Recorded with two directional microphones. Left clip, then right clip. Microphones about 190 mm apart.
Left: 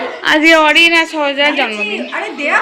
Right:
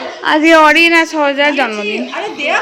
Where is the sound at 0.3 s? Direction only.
10° right (ahead or behind).